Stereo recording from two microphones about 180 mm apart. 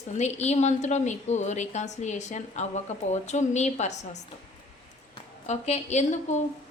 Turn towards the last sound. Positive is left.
turn(degrees=40)  # may be behind; listen again after turning